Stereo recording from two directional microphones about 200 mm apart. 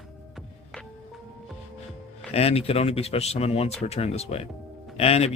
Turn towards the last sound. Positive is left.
turn(degrees=30)  # may be behind; listen again after turning